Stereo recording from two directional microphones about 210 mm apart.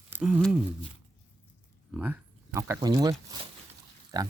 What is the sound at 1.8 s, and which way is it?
Speech, 5° right (ahead or behind).